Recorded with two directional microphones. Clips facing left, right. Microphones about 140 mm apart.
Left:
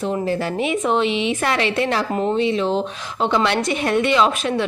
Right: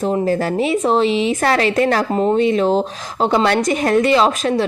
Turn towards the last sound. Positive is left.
turn(degrees=-35)  # may be behind; listen again after turning